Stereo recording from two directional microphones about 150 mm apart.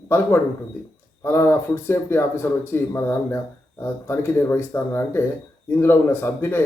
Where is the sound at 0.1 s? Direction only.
15° left (ahead or behind).